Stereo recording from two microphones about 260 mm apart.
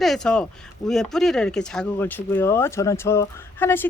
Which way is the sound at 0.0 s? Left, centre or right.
Centre.